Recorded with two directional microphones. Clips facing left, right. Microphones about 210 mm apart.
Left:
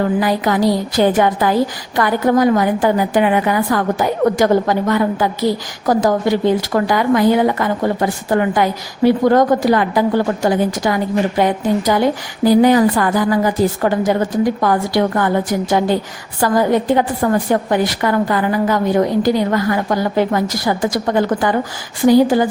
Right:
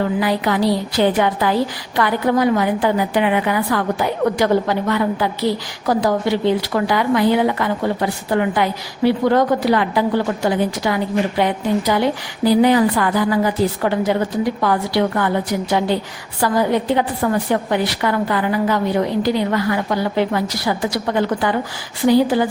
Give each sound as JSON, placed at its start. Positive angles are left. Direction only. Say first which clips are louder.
{"t": 0.2, "sound": "a woman's voice", "louder": "left 2 dB", "side_deg": 45}